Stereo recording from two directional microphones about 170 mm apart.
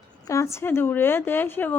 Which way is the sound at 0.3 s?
15° left (ahead or behind).